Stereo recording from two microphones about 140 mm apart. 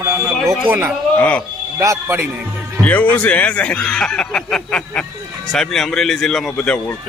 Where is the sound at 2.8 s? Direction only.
10° left (ahead or behind).